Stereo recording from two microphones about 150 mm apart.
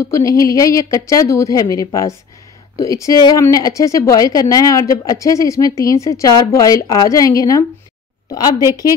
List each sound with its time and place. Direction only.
0.0 s a woman's voice: 20° left (ahead or behind)